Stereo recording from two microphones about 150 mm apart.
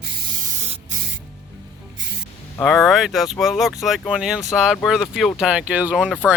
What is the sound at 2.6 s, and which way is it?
Speech, centre (ahead or behind).